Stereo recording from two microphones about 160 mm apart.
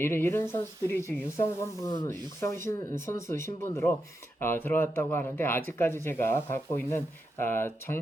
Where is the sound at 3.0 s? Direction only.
20° left (ahead or behind).